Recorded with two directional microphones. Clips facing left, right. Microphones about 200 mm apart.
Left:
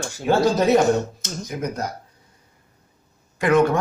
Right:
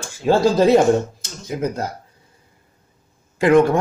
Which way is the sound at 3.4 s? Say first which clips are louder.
Right 4 dB; 25° right (ahead or behind).